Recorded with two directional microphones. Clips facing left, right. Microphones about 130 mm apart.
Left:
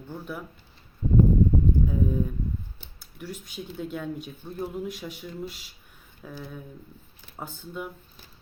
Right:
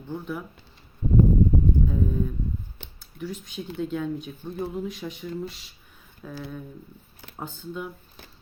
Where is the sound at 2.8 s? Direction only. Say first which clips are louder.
Right 6 dB; 75° right (ahead or behind).